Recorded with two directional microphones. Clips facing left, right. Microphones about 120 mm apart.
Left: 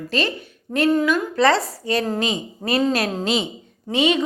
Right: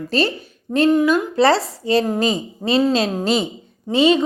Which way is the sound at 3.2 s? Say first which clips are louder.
Right 3 dB; 40° right (ahead or behind).